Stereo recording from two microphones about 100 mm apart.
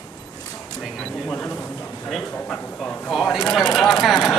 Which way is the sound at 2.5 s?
10° left (ahead or behind).